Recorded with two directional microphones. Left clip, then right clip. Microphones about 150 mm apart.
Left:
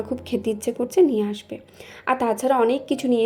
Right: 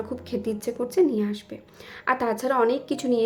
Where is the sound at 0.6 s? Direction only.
15° left (ahead or behind).